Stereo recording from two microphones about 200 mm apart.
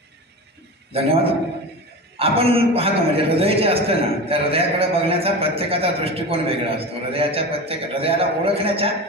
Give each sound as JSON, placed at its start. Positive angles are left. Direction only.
{"t": 0.9, "sound": "a man's voice", "side_deg": -30}